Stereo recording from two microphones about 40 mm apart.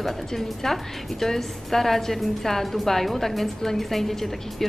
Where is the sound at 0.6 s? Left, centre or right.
Centre.